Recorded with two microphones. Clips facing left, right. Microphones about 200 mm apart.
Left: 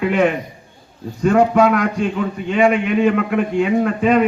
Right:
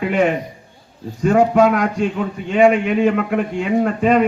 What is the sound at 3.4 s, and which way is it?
Speech, 50° left (ahead or behind).